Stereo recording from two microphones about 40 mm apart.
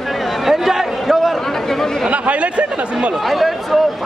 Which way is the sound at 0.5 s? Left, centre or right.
Centre.